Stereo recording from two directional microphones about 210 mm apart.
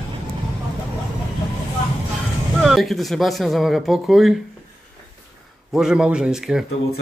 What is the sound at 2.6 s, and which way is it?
Speech, centre (ahead or behind).